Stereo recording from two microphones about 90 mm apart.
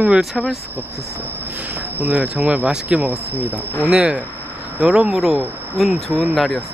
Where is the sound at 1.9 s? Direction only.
15° right (ahead or behind); by 6.1 s centre (ahead or behind).